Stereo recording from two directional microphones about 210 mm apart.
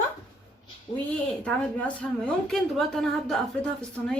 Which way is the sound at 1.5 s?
5° left (ahead or behind).